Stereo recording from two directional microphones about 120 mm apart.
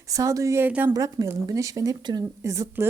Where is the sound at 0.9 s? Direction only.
30° right (ahead or behind).